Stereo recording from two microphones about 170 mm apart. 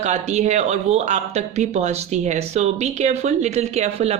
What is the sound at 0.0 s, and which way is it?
Speech, 40° right (ahead or behind).